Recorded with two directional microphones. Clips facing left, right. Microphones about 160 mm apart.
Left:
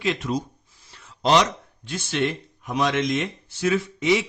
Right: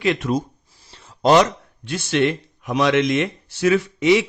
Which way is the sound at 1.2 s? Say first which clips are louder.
Right 5 dB; 50° right (ahead or behind).